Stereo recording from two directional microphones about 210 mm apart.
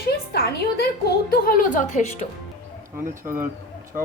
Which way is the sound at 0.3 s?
50° left (ahead or behind).